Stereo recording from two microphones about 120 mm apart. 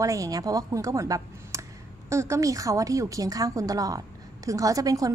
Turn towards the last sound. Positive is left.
turn(degrees=-30)  # may be behind; listen again after turning